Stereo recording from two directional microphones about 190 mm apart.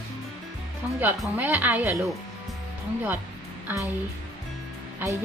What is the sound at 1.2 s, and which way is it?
Speech, 10° right (ahead or behind).